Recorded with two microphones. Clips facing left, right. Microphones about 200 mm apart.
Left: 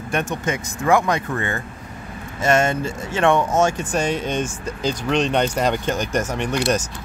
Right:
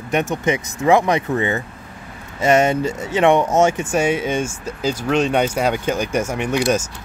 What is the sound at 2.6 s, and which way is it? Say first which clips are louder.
Speech: right 4 dB; 15° right (ahead or behind).